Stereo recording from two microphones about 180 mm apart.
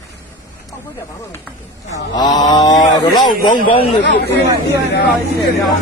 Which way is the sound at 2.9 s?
20° left (ahead or behind).